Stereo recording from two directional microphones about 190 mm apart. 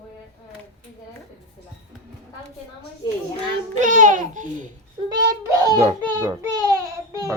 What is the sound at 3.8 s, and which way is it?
Babbling, 45° right (ahead or behind).